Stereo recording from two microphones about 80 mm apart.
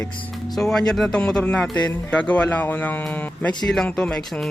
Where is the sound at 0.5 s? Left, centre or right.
Centre.